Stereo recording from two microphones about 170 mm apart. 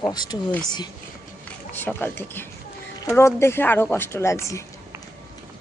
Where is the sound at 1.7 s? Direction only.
10° left (ahead or behind).